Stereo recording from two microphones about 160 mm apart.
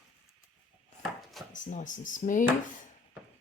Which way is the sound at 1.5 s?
50° left (ahead or behind).